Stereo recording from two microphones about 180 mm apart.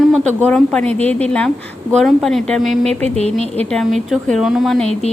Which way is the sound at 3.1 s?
35° right (ahead or behind).